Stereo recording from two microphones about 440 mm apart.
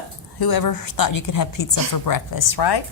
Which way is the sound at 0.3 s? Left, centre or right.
Left.